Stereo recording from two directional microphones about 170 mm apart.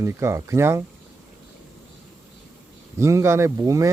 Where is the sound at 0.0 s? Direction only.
15° right (ahead or behind).